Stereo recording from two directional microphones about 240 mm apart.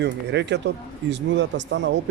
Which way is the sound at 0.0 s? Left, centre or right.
Right.